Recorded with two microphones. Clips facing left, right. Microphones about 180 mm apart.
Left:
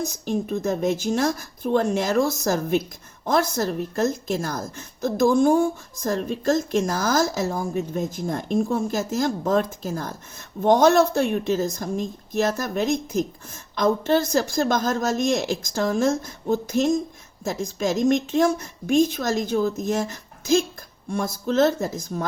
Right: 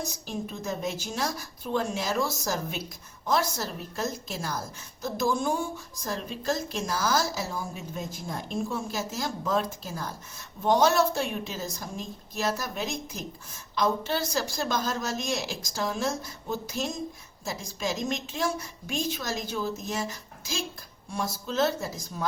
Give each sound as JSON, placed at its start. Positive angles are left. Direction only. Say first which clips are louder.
{"t": 0.3, "sound": "a woman's voice", "louder": "left 10 dB", "side_deg": 50}